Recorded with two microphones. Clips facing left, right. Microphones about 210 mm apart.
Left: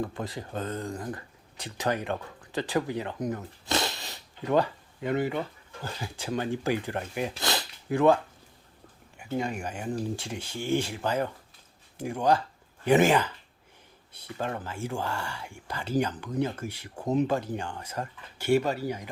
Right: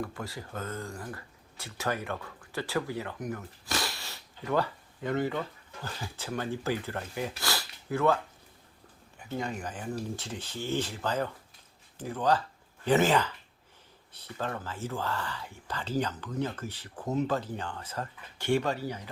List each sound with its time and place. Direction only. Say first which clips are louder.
0.0 s speech: left 4 dB; 20° left (ahead or behind)